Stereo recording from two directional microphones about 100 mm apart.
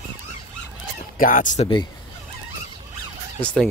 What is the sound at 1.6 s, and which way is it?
Speech, 85° left.